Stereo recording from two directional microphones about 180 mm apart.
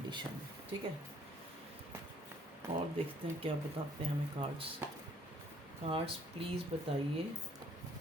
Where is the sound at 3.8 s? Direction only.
30° right (ahead or behind).